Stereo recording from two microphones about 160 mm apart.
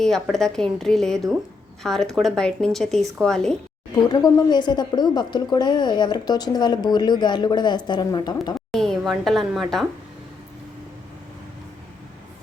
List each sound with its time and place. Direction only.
0.0 s speech: centre (ahead or behind)
4.1 s speech: 25° left (ahead or behind)
8.7 s speech: centre (ahead or behind)